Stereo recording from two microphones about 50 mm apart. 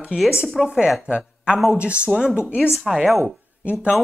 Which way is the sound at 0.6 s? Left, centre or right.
Centre.